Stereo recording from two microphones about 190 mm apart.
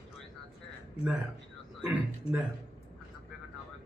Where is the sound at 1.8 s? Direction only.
10° right (ahead or behind).